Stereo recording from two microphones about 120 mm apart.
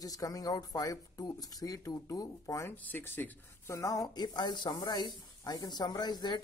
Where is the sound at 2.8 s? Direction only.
15° left (ahead or behind).